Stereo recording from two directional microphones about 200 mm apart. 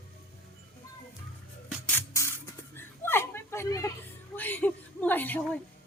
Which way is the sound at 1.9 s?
15° left (ahead or behind).